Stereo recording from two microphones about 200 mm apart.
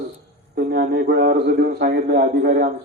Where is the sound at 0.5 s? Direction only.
50° right (ahead or behind).